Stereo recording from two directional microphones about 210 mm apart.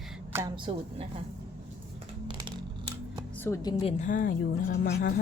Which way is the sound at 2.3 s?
20° right (ahead or behind).